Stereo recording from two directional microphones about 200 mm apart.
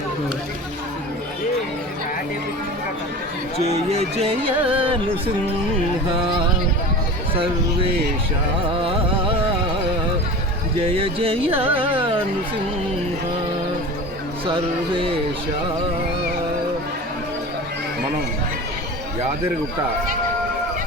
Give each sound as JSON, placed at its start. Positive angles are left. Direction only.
{"t": 3.6, "sound": "music", "side_deg": -30}
{"t": 7.3, "sound": "music", "side_deg": -25}
{"t": 10.8, "sound": "music", "side_deg": -30}
{"t": 14.4, "sound": "music", "side_deg": -25}